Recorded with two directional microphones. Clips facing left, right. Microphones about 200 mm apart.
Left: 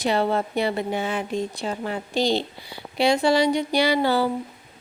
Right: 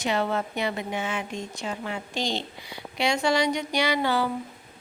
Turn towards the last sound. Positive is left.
turn(degrees=35)  # may be behind; listen again after turning